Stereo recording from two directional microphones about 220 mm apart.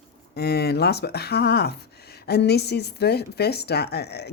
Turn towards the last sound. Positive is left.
turn(degrees=50)  # may be behind; listen again after turning